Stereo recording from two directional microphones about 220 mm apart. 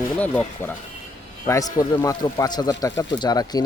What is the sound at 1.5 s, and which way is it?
A man's voice, 15° left (ahead or behind).